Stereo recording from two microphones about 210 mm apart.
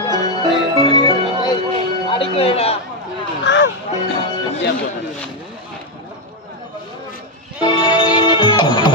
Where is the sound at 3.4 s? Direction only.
55° left (ahead or behind).